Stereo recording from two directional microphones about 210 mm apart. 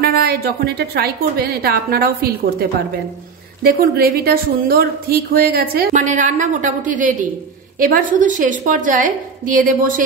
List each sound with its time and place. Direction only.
0.0 s speech: 45° right (ahead or behind)
3.6 s a woman's voice: 45° right (ahead or behind)